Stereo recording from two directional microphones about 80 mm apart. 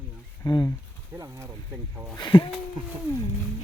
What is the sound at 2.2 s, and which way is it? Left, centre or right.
Speech, left.